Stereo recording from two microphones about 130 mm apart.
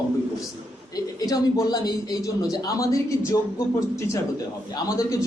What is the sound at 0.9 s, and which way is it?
A man's voice, 30° left (ahead or behind).